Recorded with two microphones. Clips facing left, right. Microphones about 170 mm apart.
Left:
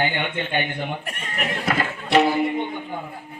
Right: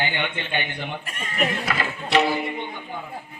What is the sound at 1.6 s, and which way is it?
Music, 50° left (ahead or behind).